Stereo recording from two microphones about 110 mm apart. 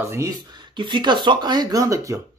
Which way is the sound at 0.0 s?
25° right (ahead or behind).